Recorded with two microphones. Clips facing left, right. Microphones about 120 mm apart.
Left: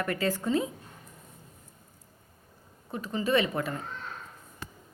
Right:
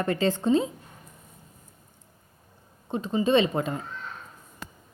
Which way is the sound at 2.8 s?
25° right (ahead or behind).